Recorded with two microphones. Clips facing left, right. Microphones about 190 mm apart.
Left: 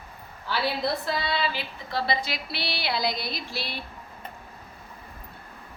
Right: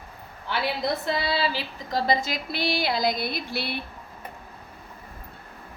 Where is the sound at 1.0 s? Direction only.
25° right (ahead or behind); by 3.8 s 55° right (ahead or behind).